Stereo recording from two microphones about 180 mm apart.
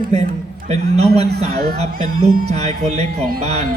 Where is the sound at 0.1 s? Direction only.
35° right (ahead or behind).